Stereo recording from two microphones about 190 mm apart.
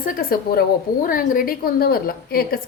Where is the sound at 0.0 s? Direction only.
50° left (ahead or behind).